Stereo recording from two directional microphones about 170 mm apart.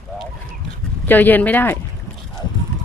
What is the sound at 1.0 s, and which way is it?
Speech, 10° left (ahead or behind).